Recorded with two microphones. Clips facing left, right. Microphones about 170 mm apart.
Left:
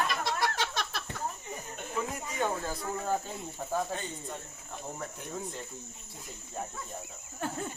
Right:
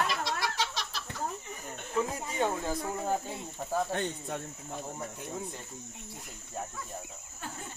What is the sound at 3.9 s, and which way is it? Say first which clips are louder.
Speech: right 5 dB; 65° right (ahead or behind).